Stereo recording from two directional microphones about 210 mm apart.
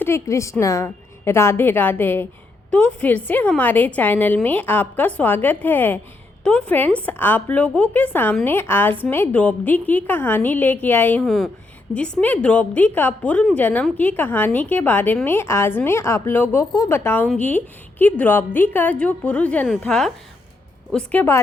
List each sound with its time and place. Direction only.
0.0 s a woman's voice: 15° left (ahead or behind)